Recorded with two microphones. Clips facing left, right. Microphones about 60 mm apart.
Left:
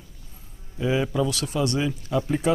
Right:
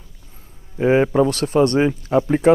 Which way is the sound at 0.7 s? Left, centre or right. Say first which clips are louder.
Right 9 dB; right.